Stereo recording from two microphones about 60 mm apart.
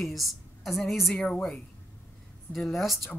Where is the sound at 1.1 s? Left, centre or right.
Left.